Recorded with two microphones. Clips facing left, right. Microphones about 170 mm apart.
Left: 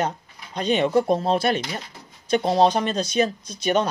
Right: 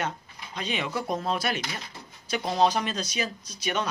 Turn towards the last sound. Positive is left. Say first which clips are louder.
# left 8 dB
turn(degrees=35)  # may be behind; listen again after turning